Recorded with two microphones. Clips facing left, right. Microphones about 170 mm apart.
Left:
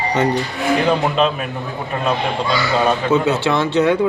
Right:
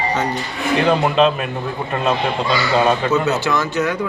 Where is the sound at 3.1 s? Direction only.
30° left (ahead or behind).